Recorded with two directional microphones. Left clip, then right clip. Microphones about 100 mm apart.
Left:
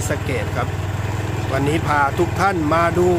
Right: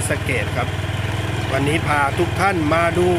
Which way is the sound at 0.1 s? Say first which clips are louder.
Right 2 dB; 10° left (ahead or behind).